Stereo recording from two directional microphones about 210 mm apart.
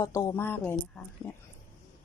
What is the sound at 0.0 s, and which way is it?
A woman's voice, 15° left (ahead or behind).